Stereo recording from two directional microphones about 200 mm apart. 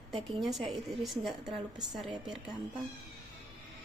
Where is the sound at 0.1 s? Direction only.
Centre (ahead or behind).